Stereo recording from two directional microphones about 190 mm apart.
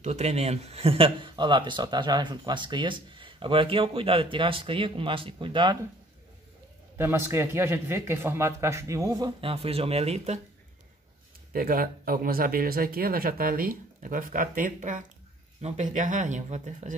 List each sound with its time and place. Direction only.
0.0 s speech: 35° right (ahead or behind)
7.0 s a man's voice: 10° right (ahead or behind); by 10.4 s 35° right (ahead or behind)
11.5 s speech: 50° right (ahead or behind)